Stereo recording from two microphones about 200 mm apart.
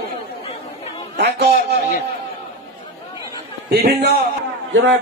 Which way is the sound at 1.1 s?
60° right (ahead or behind).